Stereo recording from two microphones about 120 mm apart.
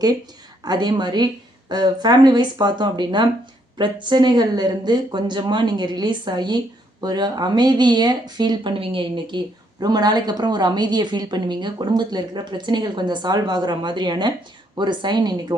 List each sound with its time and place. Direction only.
0.6 s a woman's voice: 35° right (ahead or behind)